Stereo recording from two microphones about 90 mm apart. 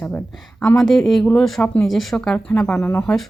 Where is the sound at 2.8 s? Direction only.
25° left (ahead or behind).